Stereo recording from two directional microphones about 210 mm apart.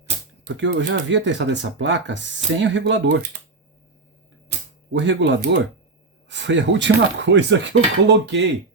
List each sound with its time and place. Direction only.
0.4 s speech: 55° right (ahead or behind)
4.9 s speech: 55° right (ahead or behind)